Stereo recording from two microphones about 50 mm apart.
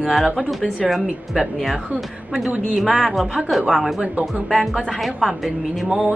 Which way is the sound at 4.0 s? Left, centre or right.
Right.